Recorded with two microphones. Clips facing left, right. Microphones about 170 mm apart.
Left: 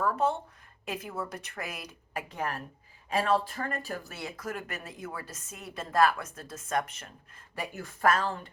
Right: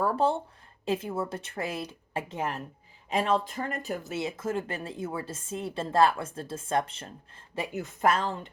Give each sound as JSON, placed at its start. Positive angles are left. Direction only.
{"t": 0.0, "sound": "speech", "side_deg": -30}